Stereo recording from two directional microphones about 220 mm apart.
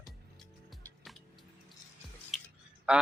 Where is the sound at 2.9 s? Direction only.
5° right (ahead or behind).